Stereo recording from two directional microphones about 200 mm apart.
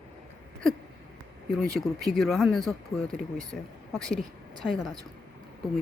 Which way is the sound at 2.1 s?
Centre (ahead or behind).